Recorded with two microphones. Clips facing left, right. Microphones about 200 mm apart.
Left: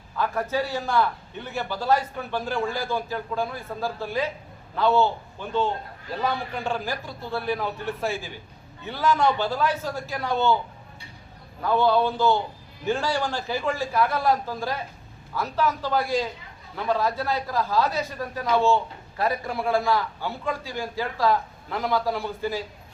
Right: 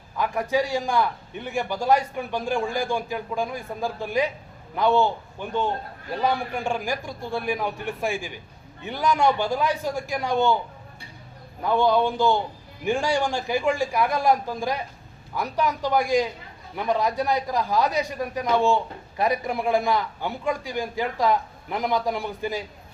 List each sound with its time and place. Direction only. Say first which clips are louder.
0.2 s a man's voice: right 2 dB; 15° right (ahead or behind)
11.6 s a man's voice: right 1 dB; 15° right (ahead or behind)